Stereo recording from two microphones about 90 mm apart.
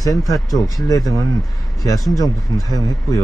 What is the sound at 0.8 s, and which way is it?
Speech, 40° left (ahead or behind).